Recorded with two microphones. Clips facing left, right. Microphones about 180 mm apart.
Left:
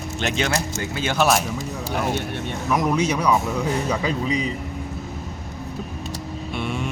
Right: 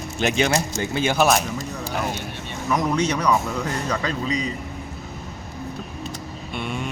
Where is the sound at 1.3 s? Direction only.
Centre (ahead or behind).